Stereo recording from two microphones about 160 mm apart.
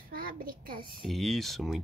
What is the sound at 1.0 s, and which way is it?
Speech, centre (ahead or behind).